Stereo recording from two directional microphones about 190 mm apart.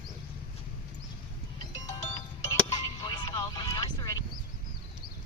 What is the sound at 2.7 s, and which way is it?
Music, 20° left (ahead or behind).